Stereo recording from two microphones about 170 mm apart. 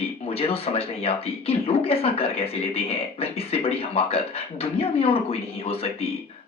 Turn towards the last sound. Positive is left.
turn(degrees=35)  # may be behind; listen again after turning